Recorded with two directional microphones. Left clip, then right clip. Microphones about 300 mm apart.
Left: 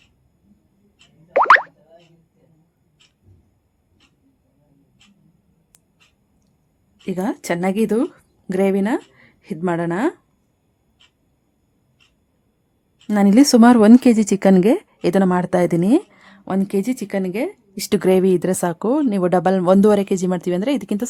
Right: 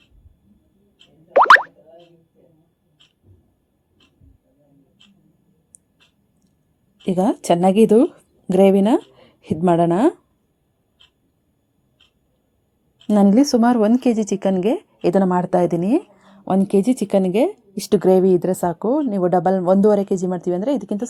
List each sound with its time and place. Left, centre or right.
1.3 s boing: centre
7.0 s speech: centre
13.2 s speech: centre
16.2 s a woman's voice: centre
17.9 s speech: centre